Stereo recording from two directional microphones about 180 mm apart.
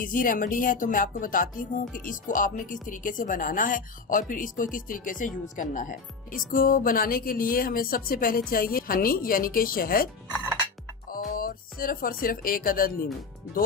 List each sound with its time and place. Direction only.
0.0 s speech: 50° left (ahead or behind)
11.3 s speech: 50° left (ahead or behind)